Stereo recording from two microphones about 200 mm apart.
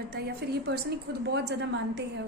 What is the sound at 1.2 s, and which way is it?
A woman's voice, 55° right (ahead or behind).